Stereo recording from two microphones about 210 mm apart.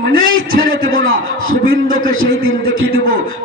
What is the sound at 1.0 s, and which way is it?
Speech, 70° right (ahead or behind).